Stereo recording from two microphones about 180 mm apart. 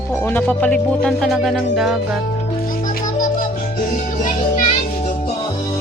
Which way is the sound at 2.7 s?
50° left (ahead or behind).